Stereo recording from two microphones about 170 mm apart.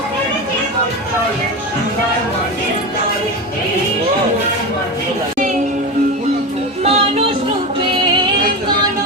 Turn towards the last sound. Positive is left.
turn(degrees=-35)  # may be behind; listen again after turning